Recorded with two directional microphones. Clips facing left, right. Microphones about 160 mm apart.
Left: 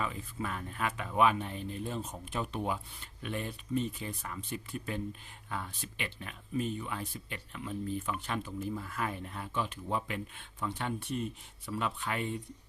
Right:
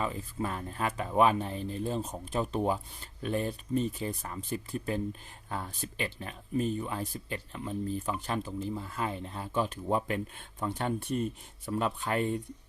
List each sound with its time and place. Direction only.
0.0 s speech: 35° right (ahead or behind)